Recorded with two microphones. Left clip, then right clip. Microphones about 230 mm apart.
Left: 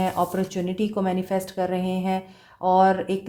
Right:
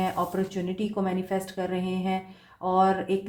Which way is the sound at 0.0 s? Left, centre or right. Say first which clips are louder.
Left 4 dB; left.